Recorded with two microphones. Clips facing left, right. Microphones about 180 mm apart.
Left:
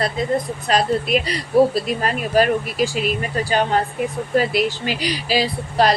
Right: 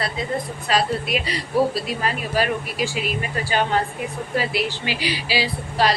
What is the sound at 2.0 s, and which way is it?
Speech, 45° left (ahead or behind).